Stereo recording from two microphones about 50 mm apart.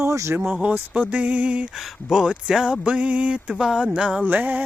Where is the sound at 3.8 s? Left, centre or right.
Right.